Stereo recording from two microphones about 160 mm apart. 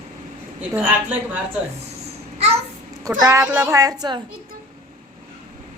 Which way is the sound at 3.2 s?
20° right (ahead or behind).